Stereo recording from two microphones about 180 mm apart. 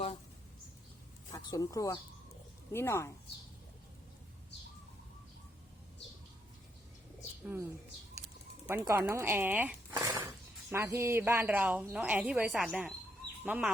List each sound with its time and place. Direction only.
1.3 s speech: 20° left (ahead or behind)
7.4 s speech: 15° right (ahead or behind)
8.8 s speech: 15° right (ahead or behind)
9.9 s a sound: 20° right (ahead or behind)
10.7 s speech: 15° right (ahead or behind)